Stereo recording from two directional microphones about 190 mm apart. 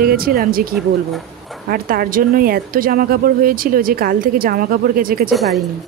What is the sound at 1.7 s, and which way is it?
Speech, 50° right (ahead or behind).